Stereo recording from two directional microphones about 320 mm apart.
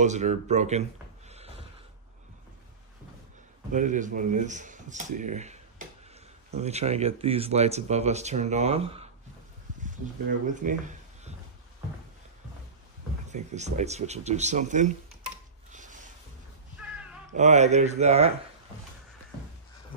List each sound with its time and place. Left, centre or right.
0.0 s speech: right
1.3 s a sound: centre
3.7 s speech: right
10.4 s a sound: right
13.3 s speech: right
15.7 s rub: right
17.3 s speech: right